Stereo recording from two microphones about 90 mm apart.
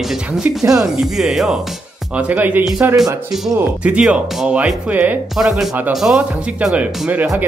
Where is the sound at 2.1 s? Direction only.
15° right (ahead or behind).